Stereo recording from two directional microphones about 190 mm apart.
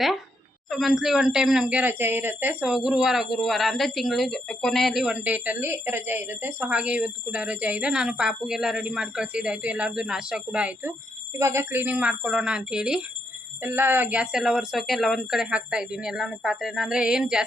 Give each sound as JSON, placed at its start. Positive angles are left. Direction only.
{"t": 0.7, "sound": "speech", "side_deg": 0}